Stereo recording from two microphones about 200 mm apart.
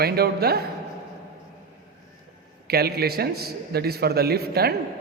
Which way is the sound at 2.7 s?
50° right (ahead or behind).